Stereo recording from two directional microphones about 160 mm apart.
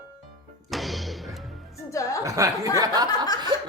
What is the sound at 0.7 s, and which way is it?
Music, centre (ahead or behind).